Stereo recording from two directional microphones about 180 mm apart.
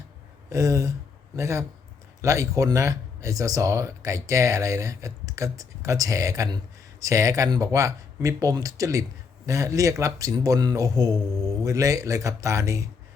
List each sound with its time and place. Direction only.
0.5 s speech: 20° right (ahead or behind)